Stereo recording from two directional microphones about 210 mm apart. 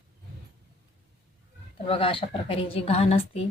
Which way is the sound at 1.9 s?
25° left (ahead or behind).